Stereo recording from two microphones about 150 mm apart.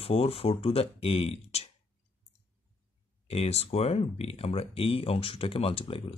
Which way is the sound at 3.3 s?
45° left (ahead or behind).